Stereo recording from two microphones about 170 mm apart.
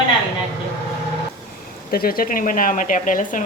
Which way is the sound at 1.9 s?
60° left (ahead or behind).